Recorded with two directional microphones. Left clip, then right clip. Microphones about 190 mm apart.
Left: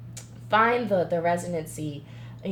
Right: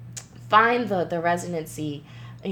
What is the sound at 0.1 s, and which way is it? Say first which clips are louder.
A woman's voice: right 5 dB; 50° right (ahead or behind).